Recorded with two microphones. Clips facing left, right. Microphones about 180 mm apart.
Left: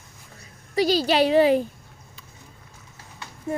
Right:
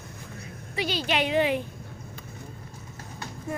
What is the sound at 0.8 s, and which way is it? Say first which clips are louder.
Speech: left 8 dB; 35° left (ahead or behind).